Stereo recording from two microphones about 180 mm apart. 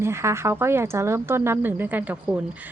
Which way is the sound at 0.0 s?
15° right (ahead or behind).